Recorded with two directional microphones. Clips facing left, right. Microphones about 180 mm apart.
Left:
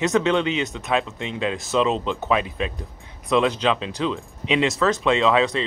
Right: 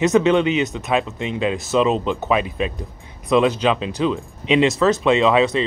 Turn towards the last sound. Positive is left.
turn(degrees=-15)  # may be behind; listen again after turning